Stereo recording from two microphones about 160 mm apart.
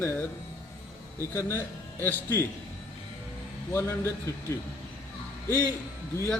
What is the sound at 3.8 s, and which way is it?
Speech, 15° left (ahead or behind).